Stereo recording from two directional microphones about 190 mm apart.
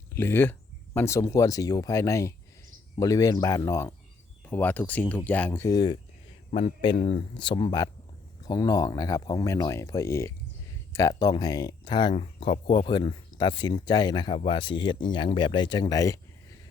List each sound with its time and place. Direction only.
0.1 s speech: 10° left (ahead or behind)
6.5 s speech: 35° left (ahead or behind); by 16.2 s 15° left (ahead or behind)